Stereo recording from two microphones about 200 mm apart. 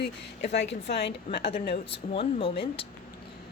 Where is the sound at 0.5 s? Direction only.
60° left (ahead or behind).